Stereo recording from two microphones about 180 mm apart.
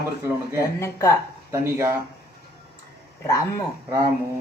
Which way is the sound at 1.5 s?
15° right (ahead or behind).